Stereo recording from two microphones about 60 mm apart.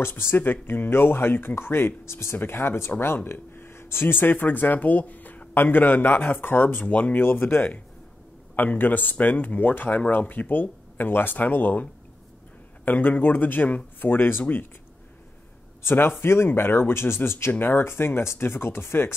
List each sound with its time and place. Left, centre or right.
0.0 s speech: left
15.8 s speech: left